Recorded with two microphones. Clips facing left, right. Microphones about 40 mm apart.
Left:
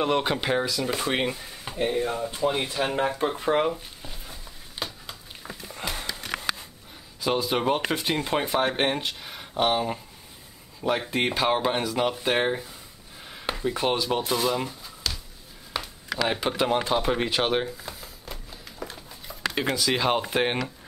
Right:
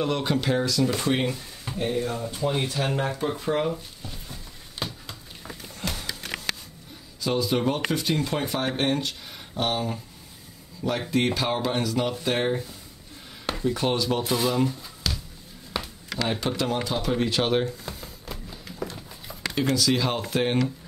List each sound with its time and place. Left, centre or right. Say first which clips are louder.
0.0 s speech: left 1 dB; left
3.3 s speech: left 2 dB; left
4.0 s a sound: right 1 dB; centre
7.2 s speech: even; left
11.0 s speech: right 1 dB; centre
14.2 s speech: right 2 dB; centre
15.7 s a sound: left 1 dB; centre
16.3 s speech: left 2 dB; left
17.4 s a sound: right 1 dB; centre
19.5 s speech: right 3 dB; centre